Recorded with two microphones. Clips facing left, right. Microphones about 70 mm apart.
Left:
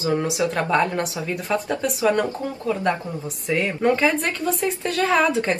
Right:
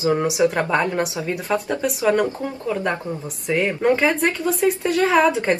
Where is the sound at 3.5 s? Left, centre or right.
Centre.